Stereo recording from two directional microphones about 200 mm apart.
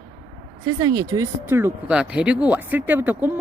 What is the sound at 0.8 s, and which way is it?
Speech, 20° right (ahead or behind).